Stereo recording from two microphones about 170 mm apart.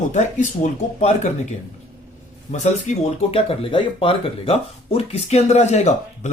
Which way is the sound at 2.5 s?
45° left (ahead or behind).